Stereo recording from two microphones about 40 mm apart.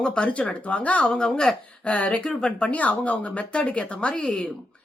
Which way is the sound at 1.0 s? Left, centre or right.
Centre.